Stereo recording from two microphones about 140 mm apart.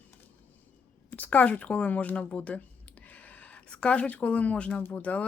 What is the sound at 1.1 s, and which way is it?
Speech, 10° left (ahead or behind).